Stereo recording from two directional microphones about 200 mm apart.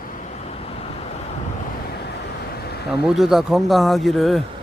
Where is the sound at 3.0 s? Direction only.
Centre (ahead or behind).